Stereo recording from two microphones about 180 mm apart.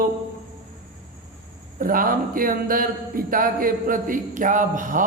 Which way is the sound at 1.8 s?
50° right (ahead or behind).